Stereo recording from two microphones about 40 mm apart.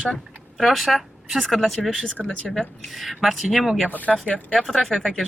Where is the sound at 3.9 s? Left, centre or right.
Left.